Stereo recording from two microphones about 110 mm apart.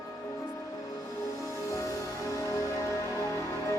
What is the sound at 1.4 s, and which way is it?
Music, 30° left (ahead or behind).